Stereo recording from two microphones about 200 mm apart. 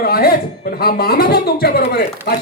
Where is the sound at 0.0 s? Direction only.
50° left (ahead or behind).